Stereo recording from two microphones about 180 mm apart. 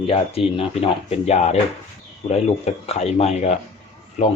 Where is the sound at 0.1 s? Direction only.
30° left (ahead or behind).